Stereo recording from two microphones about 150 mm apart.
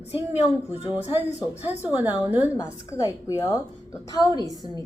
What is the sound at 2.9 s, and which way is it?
A woman's voice, 20° left (ahead or behind).